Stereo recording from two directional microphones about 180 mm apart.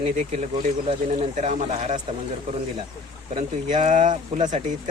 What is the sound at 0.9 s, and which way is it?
Speech, 40° right (ahead or behind).